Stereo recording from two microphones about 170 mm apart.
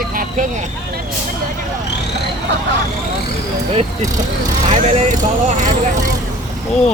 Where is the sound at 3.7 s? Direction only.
35° right (ahead or behind).